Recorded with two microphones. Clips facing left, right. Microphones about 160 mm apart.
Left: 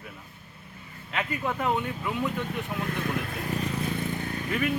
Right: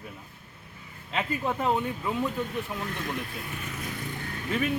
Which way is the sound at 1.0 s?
30° right (ahead or behind).